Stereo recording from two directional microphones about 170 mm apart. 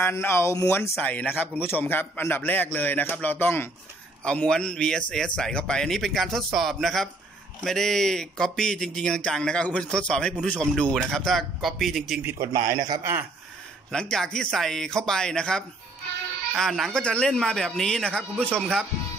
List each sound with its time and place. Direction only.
0.0 s speech: 15° left (ahead or behind)
12.2 s a man's voice: 15° right (ahead or behind)
13.9 s speech: 5° left (ahead or behind)